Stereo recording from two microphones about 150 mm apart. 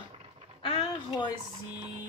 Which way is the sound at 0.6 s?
35° left (ahead or behind).